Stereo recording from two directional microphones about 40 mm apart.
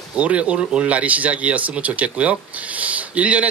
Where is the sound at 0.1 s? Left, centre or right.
Right.